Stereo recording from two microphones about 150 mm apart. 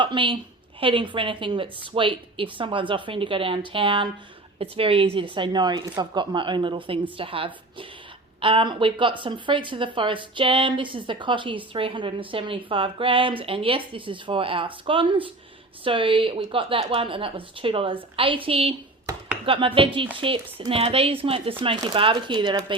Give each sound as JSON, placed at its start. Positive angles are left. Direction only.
{"t": 0.0, "sound": "a woman's voice", "side_deg": -35}